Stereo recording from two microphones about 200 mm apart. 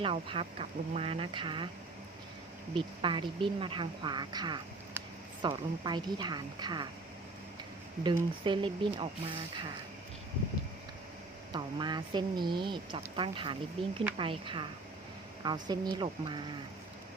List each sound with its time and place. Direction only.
0.0 s speech: 25° right (ahead or behind)
2.7 s speech: 25° right (ahead or behind)
8.0 s speech: 25° right (ahead or behind)
11.5 s speech: 20° right (ahead or behind)